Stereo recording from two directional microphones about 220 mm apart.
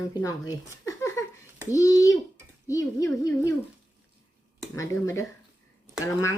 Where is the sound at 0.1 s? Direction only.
15° left (ahead or behind).